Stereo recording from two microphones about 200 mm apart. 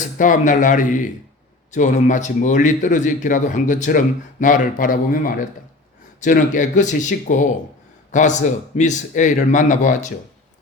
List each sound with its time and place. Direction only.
0.2 s speech: 40° left (ahead or behind)